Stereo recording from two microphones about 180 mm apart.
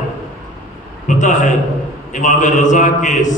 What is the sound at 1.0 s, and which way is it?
A man's voice, 45° left (ahead or behind).